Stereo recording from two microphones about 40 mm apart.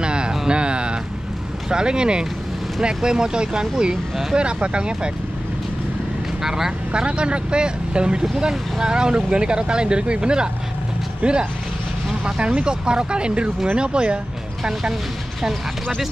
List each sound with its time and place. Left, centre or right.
0.0 s a sound: right
1.7 s speech: right
6.4 s speech: centre
6.9 s speech: right
14.6 s speech: centre